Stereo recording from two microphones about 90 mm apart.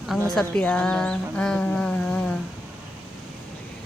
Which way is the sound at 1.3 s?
10° left (ahead or behind).